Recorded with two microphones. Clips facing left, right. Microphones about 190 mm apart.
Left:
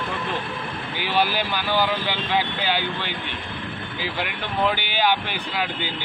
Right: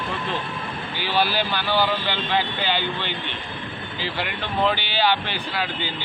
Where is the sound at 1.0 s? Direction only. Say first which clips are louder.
Even; 15° left (ahead or behind).